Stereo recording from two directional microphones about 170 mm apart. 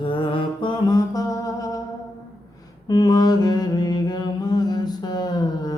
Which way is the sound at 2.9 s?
25° left (ahead or behind).